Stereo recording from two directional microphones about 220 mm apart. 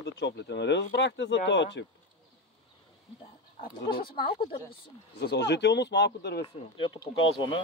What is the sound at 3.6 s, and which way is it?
Speech, 20° left (ahead or behind).